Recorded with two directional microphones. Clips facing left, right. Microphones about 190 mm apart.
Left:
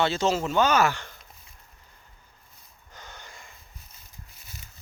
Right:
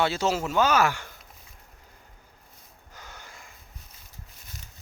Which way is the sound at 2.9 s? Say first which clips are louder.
Left 1 dB; 5° right (ahead or behind).